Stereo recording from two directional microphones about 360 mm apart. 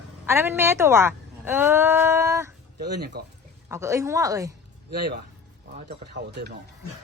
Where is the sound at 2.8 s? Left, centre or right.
Right.